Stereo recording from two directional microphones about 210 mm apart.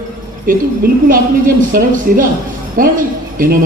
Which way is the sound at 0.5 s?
40° right (ahead or behind).